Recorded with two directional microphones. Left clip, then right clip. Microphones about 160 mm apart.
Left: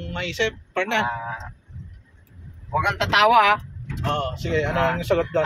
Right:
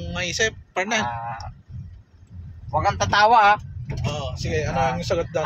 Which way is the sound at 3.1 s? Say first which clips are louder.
Right 1 dB; 25° right (ahead or behind).